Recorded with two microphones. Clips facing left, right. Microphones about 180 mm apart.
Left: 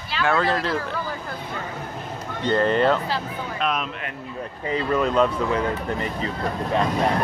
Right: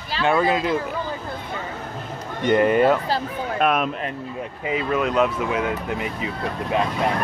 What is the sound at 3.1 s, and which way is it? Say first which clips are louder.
Speech: right 4 dB; 50° right (ahead or behind).